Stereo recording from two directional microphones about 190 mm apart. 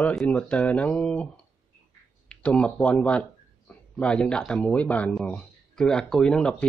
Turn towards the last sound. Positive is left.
turn(degrees=5)  # may be behind; listen again after turning